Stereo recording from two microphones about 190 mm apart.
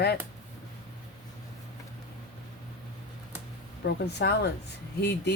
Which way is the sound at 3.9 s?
60° left (ahead or behind).